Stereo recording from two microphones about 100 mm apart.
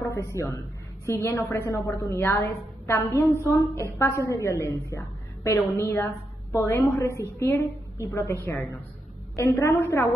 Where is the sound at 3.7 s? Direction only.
25° left (ahead or behind).